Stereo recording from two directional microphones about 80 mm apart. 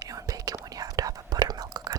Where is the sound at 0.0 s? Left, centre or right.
Right.